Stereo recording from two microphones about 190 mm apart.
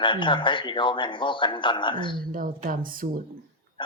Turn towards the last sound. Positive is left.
turn(degrees=25)  # may be behind; listen again after turning